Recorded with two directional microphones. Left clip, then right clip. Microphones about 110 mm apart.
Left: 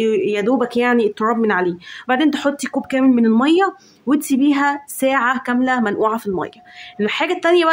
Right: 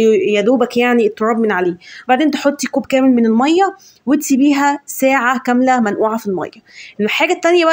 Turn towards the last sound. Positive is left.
turn(degrees=-20)  # may be behind; listen again after turning